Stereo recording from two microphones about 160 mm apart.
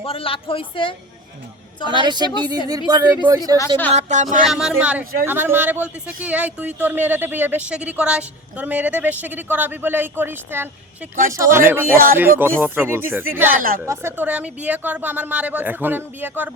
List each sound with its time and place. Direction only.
0.0 s speech: 35° left (ahead or behind)
1.9 s a woman's voice: 30° right (ahead or behind)
3.9 s music: 50° right (ahead or behind)
4.4 s speech: 5° right (ahead or behind)
13.6 s speech: 60° right (ahead or behind)
13.8 s speech: 15° right (ahead or behind)